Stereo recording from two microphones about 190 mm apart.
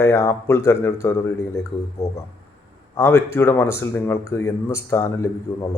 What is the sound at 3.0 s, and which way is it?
Speech, 15° left (ahead or behind).